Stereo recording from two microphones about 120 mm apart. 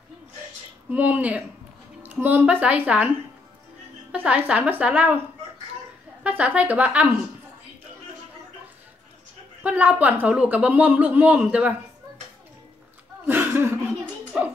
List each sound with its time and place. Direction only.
0.8 s a woman's voice: 15° right (ahead or behind)
4.1 s a woman's voice: 10° right (ahead or behind)
6.2 s a woman's voice: 10° right (ahead or behind)
9.6 s a woman's voice: 10° right (ahead or behind)
13.3 s a sound: 15° right (ahead or behind)
14.3 s speech: 5° right (ahead or behind)